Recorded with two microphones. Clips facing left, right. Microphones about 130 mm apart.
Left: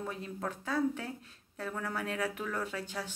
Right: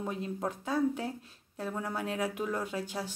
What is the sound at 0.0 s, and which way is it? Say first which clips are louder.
Speech: right 4 dB; 20° right (ahead or behind).